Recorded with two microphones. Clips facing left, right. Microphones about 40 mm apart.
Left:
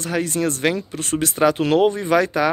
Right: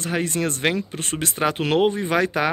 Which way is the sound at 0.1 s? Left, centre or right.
Right.